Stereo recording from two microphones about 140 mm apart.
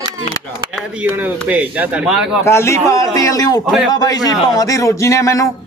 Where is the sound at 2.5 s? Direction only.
20° left (ahead or behind).